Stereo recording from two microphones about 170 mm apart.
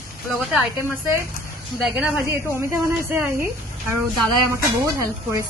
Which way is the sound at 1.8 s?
5° right (ahead or behind).